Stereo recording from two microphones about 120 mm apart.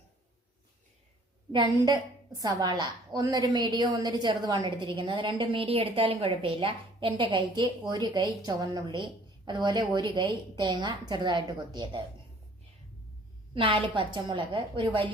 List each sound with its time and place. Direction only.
1.5 s a woman's voice: 35° right (ahead or behind)
13.5 s a woman's voice: 50° right (ahead or behind)